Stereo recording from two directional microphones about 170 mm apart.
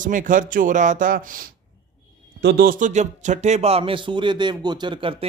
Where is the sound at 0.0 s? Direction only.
50° right (ahead or behind).